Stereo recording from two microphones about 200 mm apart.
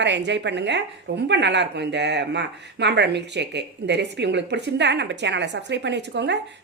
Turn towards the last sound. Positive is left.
turn(degrees=-60)  # may be behind; listen again after turning